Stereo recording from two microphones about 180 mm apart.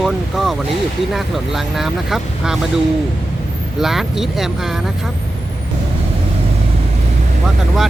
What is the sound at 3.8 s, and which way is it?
Speech, centre (ahead or behind).